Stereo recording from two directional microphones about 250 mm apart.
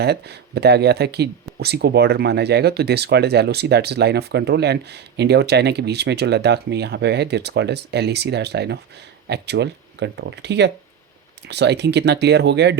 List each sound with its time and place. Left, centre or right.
0.0 s speech: right